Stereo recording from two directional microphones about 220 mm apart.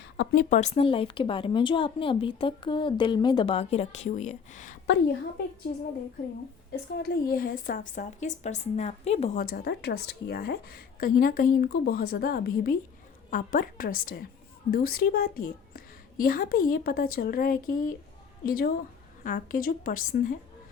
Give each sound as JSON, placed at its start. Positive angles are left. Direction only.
{"t": 0.2, "sound": "a woman's voice", "side_deg": 40}
{"t": 6.9, "sound": "a woman's voice", "side_deg": 45}